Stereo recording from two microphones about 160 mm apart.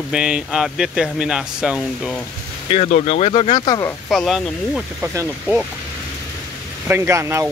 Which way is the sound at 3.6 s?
25° left (ahead or behind).